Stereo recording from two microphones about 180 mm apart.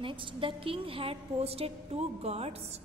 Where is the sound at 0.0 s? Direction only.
30° right (ahead or behind).